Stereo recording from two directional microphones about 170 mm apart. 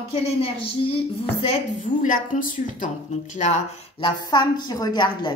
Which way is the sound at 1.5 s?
50° left (ahead or behind).